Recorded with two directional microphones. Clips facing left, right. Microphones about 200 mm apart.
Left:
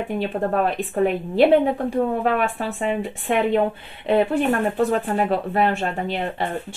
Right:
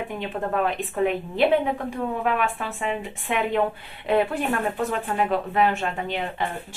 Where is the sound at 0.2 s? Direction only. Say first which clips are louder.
Left 3 dB; 40° left (ahead or behind).